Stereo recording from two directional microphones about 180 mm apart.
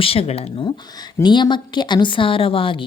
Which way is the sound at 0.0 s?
35° left (ahead or behind).